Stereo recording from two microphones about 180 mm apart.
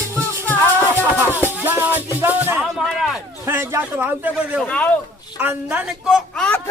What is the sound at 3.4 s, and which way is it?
A man's voice, 15° right (ahead or behind).